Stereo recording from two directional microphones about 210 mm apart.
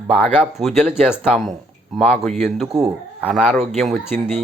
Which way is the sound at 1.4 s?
Centre (ahead or behind).